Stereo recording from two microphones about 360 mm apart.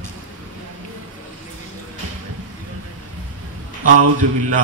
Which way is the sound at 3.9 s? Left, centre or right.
Right.